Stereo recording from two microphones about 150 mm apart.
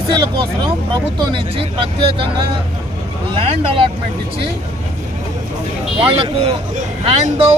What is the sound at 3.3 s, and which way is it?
Speech, 35° right (ahead or behind).